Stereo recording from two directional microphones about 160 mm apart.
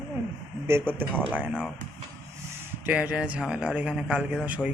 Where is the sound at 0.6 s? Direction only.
15° right (ahead or behind).